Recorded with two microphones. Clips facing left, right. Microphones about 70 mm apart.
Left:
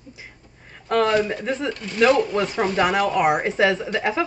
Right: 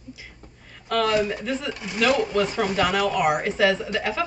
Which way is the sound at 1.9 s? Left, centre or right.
Left.